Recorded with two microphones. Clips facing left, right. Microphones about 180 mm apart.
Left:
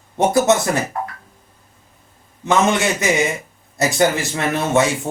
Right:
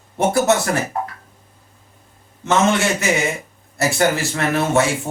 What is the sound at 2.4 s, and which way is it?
A man's voice, 20° left (ahead or behind).